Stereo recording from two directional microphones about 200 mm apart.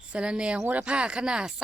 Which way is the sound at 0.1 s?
5° right (ahead or behind).